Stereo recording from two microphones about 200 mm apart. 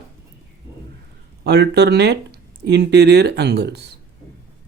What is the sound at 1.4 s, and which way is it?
Speech, 55° right (ahead or behind).